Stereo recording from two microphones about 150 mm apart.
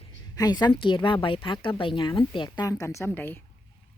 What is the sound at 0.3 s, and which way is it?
A woman's voice, 25° left (ahead or behind).